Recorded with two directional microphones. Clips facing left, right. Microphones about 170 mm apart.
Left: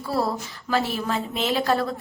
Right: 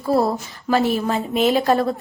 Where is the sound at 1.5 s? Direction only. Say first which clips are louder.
Right 1 dB; 20° right (ahead or behind).